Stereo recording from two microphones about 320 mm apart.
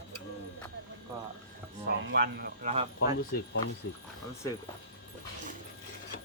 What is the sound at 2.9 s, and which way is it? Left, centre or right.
Speech, left.